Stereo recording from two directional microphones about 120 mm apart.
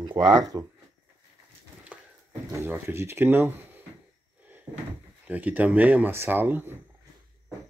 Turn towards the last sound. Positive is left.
turn(degrees=-15)  # may be behind; listen again after turning